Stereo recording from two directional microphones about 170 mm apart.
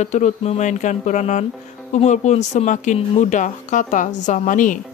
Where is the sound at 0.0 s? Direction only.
40° left (ahead or behind).